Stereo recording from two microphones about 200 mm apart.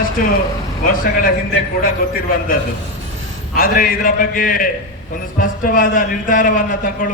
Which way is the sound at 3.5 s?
45° left (ahead or behind).